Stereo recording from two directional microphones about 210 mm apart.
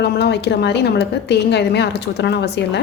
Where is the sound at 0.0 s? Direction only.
55° left (ahead or behind).